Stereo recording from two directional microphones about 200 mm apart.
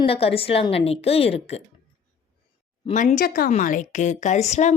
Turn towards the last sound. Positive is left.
turn(degrees=35)  # may be behind; listen again after turning